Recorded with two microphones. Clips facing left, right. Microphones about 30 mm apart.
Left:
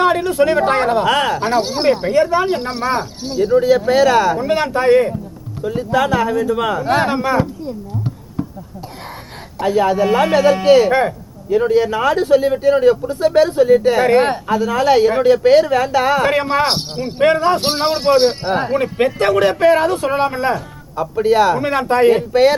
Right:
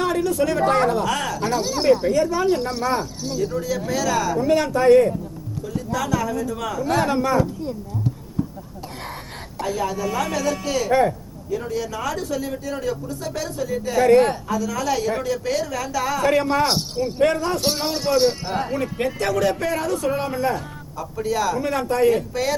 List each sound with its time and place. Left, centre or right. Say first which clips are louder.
0.0 s speech: left 7 dB; left
7.9 s a sound: left 2 dB; left
9.6 s speech: left 10 dB; left